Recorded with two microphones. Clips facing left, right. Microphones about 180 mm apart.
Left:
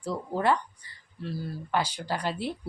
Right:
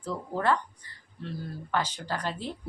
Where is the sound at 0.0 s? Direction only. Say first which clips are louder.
Left 2 dB; 10° left (ahead or behind).